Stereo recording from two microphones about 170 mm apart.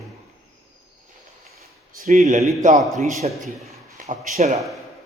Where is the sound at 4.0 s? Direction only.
50° right (ahead or behind).